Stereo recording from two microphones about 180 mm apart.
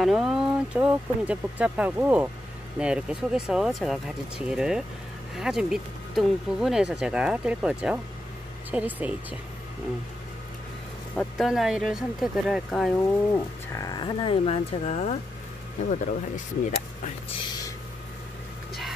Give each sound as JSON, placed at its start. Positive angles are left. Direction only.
{"t": 0.0, "sound": "speech", "side_deg": 0}
{"t": 11.1, "sound": "speech", "side_deg": 0}
{"t": 12.9, "sound": "speech", "side_deg": 15}
{"t": 17.5, "sound": "a sound", "side_deg": 20}